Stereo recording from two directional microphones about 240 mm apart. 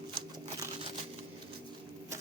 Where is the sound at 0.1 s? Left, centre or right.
Centre.